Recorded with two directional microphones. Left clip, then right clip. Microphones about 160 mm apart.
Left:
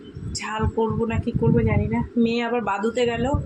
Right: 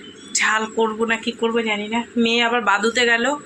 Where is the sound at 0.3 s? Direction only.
5° left (ahead or behind).